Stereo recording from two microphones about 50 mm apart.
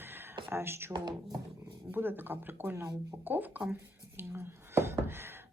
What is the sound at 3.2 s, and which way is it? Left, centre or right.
Speech, right.